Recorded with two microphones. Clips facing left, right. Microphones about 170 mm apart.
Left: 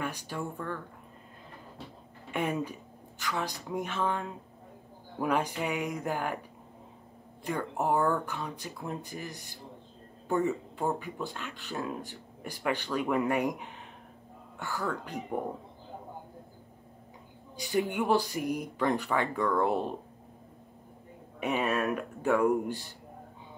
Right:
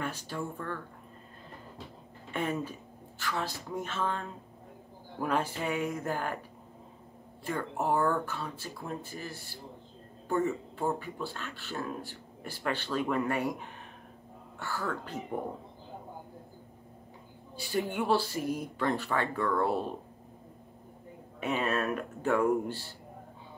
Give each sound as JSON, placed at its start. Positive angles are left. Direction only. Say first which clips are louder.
{"t": 0.0, "sound": "speech", "louder": "left 1 dB", "side_deg": 15}
{"t": 2.3, "sound": "speech", "louder": "left 2 dB", "side_deg": 15}
{"t": 7.4, "sound": "speech", "louder": "left 1 dB", "side_deg": 15}
{"t": 17.6, "sound": "speech", "louder": "left 2 dB", "side_deg": 15}
{"t": 21.4, "sound": "speech", "louder": "left 1 dB", "side_deg": 15}